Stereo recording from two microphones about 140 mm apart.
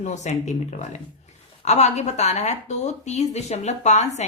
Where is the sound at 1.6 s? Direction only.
55° left (ahead or behind).